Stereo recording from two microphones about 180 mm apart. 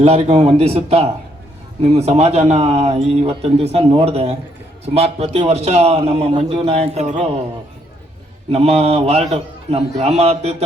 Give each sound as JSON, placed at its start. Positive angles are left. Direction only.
{"t": 0.0, "sound": "a man's voice", "side_deg": -35}
{"t": 8.4, "sound": "a man's voice", "side_deg": -35}